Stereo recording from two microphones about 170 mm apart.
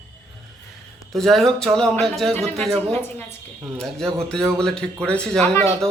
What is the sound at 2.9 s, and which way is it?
Speech, 15° left (ahead or behind).